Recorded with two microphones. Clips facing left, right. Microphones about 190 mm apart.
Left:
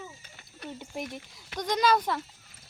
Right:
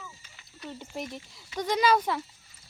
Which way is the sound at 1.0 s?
50° left (ahead or behind).